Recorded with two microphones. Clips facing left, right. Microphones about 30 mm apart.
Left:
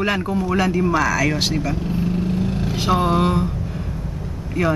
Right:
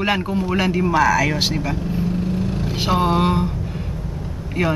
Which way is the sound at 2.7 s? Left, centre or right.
Centre.